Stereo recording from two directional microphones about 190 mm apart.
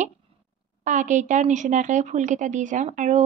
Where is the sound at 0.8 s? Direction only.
40° right (ahead or behind).